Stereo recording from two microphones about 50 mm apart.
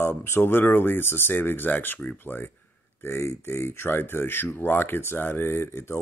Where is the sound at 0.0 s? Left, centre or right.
Left.